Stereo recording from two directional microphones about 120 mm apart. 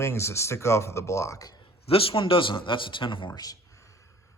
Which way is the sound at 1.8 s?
50° left (ahead or behind).